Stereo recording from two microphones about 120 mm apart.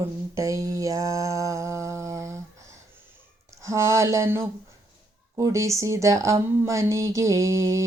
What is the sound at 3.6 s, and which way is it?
Speech, 25° right (ahead or behind).